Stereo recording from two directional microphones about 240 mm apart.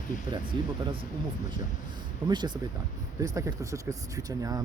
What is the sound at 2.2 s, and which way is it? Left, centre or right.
Speech, centre.